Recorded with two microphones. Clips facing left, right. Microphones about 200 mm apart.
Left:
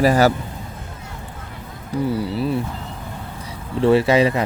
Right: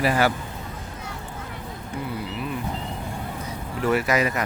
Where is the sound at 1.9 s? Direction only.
35° left (ahead or behind).